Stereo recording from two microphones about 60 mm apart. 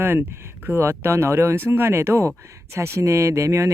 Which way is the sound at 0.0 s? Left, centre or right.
Right.